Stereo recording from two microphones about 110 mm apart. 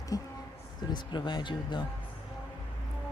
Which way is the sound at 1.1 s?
45° left (ahead or behind).